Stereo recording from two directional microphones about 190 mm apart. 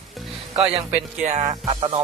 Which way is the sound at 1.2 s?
35° right (ahead or behind).